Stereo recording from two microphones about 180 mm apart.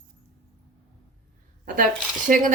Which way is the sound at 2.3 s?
50° right (ahead or behind).